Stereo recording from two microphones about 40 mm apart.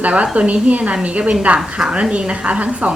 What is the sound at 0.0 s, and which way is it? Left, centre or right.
A woman's voice, right.